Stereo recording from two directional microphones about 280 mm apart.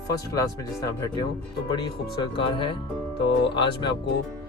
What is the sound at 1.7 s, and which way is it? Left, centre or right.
Speech, centre.